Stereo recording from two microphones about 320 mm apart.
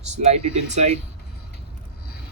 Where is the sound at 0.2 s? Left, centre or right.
Centre.